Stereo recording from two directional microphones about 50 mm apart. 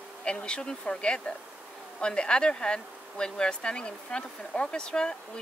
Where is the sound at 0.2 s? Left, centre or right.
Centre.